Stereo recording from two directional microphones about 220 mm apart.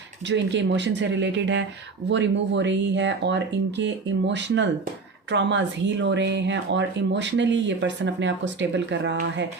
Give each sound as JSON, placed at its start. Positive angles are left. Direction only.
{"t": 0.3, "sound": "speech", "side_deg": -55}